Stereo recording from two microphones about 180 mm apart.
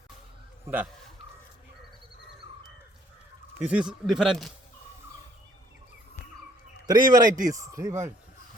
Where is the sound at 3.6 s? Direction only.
5° right (ahead or behind).